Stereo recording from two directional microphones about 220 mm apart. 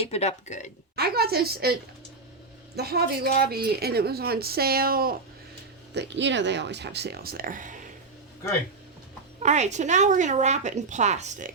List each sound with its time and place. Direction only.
0.0 s speech: 30° left (ahead or behind)
0.9 s speech: 45° right (ahead or behind)
2.7 s speech: 45° right (ahead or behind)
9.4 s a woman's voice: 30° right (ahead or behind)